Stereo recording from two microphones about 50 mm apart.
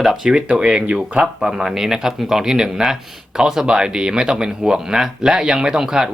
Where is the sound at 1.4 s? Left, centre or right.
Centre.